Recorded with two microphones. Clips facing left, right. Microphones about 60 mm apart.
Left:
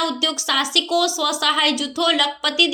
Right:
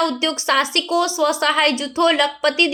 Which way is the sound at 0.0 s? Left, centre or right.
Right.